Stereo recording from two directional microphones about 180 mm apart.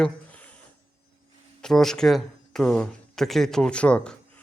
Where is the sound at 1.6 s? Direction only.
Centre (ahead or behind).